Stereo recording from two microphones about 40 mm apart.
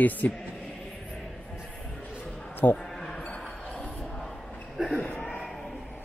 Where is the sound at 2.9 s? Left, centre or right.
Centre.